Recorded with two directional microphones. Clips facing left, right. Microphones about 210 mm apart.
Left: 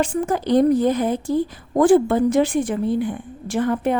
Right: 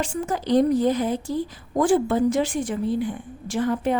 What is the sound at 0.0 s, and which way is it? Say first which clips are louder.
A woman's voice: left 5 dB; 55° left (ahead or behind).